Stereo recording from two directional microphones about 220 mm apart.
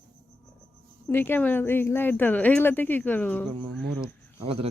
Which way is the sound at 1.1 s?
10° left (ahead or behind).